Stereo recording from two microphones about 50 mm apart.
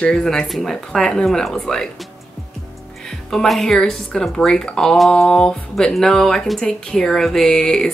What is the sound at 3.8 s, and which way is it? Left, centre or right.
Speech, centre.